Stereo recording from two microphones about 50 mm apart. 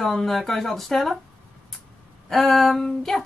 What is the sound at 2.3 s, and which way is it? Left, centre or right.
Speech, centre.